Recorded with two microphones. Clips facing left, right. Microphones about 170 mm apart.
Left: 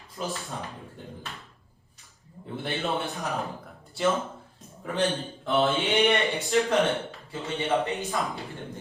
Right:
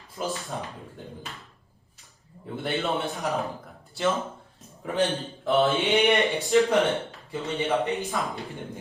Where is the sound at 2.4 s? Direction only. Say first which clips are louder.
Right 2 dB; centre (ahead or behind).